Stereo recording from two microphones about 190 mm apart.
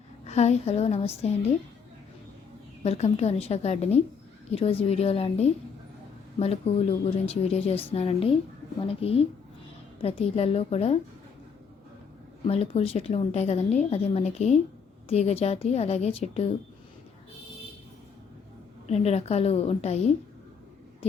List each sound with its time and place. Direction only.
0.3 s a woman's voice: 35° left (ahead or behind)
2.8 s a woman's voice: 35° left (ahead or behind)
12.5 s a woman's voice: 30° left (ahead or behind)
18.9 s a woman's voice: 35° left (ahead or behind)